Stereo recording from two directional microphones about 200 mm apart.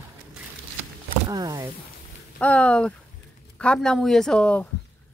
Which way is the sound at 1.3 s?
20° right (ahead or behind).